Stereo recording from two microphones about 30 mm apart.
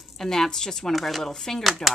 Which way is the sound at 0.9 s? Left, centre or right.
Centre.